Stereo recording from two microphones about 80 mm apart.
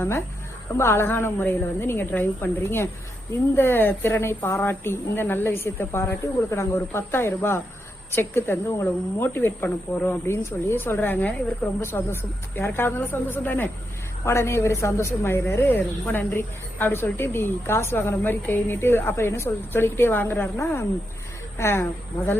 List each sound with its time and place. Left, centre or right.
0.8 s a woman's voice: left